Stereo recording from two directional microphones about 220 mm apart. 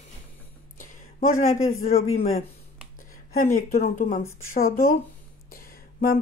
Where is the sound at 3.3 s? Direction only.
40° left (ahead or behind).